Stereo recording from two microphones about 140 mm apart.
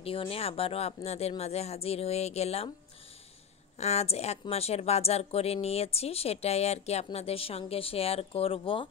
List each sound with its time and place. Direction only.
0.0 s speech: 40° left (ahead or behind)
3.7 s speech: 50° left (ahead or behind)